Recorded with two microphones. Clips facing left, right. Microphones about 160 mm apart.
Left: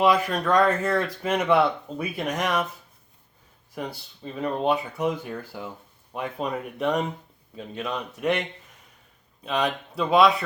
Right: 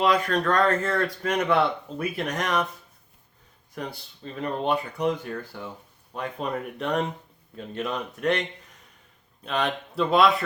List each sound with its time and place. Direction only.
0.0 s speech: 5° left (ahead or behind)
3.8 s speech: 5° left (ahead or behind)